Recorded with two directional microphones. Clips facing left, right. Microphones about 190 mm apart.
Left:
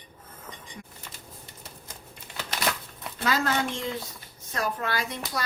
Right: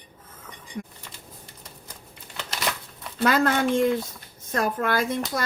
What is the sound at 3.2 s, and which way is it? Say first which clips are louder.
Speech: right 5 dB; 55° right (ahead or behind).